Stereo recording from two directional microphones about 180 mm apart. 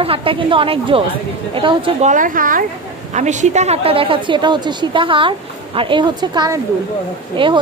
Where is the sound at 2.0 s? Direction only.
45° right (ahead or behind).